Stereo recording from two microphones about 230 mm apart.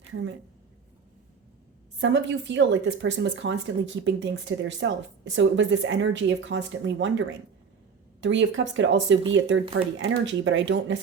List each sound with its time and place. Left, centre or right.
2.0 s speech: right